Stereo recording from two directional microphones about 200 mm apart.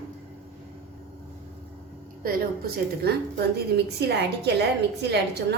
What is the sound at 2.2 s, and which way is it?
A woman's voice, 50° right (ahead or behind).